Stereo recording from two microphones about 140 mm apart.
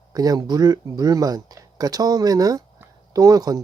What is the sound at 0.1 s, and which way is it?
Speech, 25° right (ahead or behind).